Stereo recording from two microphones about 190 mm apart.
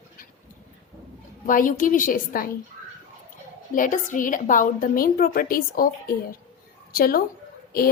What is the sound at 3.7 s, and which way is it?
A woman's voice, 45° left (ahead or behind).